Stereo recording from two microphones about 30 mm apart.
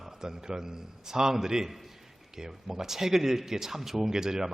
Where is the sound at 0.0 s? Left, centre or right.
Centre.